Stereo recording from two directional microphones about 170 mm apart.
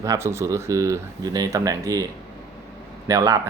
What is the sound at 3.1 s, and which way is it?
Speech, 20° right (ahead or behind).